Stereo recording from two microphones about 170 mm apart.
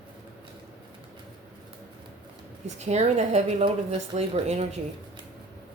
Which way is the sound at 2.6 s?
40° right (ahead or behind).